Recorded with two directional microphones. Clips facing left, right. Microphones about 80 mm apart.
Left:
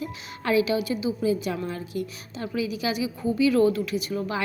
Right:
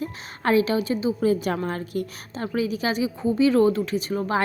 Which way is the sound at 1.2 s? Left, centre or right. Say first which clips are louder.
Right 3 dB; right.